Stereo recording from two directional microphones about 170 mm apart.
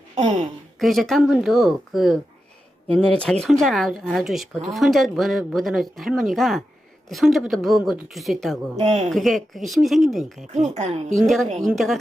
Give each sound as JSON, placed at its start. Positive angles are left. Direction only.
{"t": 0.2, "sound": "speech", "side_deg": -40}
{"t": 0.8, "sound": "speech", "side_deg": 0}
{"t": 8.8, "sound": "a man's voice", "side_deg": -40}
{"t": 9.0, "sound": "speech", "side_deg": 0}
{"t": 10.8, "sound": "a man's voice", "side_deg": -40}
{"t": 11.1, "sound": "speech", "side_deg": 0}